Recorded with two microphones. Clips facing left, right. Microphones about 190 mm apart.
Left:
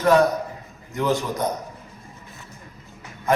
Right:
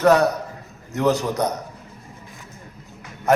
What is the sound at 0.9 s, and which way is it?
Speech, 70° right (ahead or behind).